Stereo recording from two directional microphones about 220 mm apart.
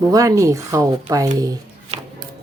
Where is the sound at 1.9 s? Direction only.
30° right (ahead or behind).